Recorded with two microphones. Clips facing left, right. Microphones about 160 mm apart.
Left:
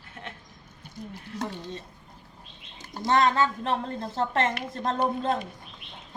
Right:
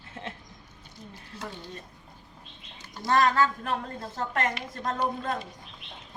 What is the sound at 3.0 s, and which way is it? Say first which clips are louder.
A woman's voice: left 1 dB; 20° left (ahead or behind).